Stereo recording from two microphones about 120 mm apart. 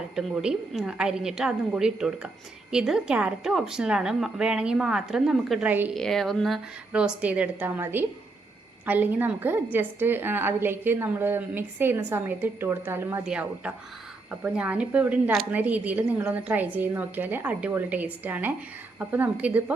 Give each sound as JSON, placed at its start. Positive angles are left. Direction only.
{"t": 0.2, "sound": "a woman's voice", "side_deg": -5}
{"t": 5.6, "sound": "a woman's voice", "side_deg": -15}
{"t": 5.9, "sound": "a woman's voice", "side_deg": 0}
{"t": 13.2, "sound": "a woman's voice", "side_deg": -10}